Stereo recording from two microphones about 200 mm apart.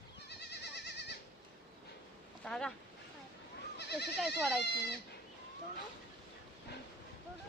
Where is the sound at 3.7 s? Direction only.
55° left (ahead or behind).